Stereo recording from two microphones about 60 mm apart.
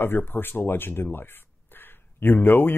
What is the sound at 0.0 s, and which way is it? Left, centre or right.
Speech, left.